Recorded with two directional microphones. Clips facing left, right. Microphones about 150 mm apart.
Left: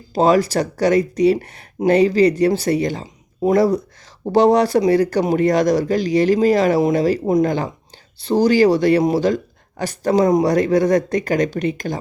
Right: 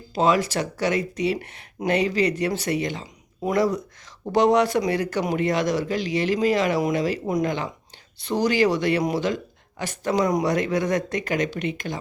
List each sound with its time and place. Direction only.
0.1 s speech: 40° left (ahead or behind)